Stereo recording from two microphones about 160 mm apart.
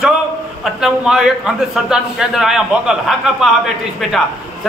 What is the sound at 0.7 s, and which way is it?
A man's voice, 5° right (ahead or behind).